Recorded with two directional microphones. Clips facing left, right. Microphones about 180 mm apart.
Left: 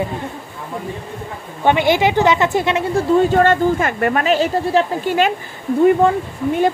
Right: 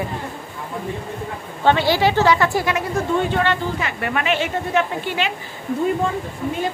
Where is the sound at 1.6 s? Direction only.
20° left (ahead or behind); by 5.3 s 45° left (ahead or behind).